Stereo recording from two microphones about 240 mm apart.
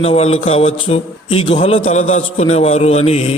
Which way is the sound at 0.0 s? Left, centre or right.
Left.